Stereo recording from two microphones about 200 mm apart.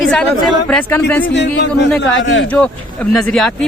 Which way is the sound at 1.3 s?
60° left (ahead or behind).